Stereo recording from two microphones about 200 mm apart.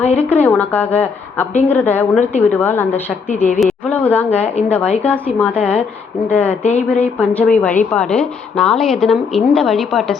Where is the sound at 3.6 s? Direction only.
5° left (ahead or behind).